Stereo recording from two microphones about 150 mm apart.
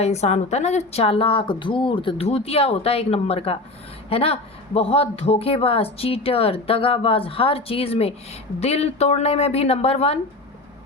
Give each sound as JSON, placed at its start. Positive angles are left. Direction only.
{"t": 0.0, "sound": "a woman's voice", "side_deg": 45}